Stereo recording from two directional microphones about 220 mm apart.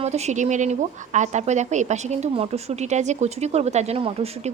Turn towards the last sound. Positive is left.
turn(degrees=-25)  # may be behind; listen again after turning